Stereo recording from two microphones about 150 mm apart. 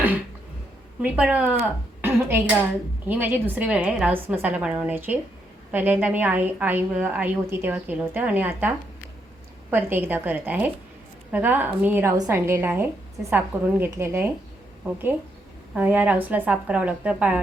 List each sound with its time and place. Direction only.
1.0 s a woman's voice: 10° right (ahead or behind)